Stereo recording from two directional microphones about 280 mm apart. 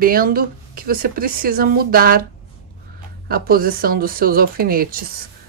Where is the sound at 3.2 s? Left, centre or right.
Right.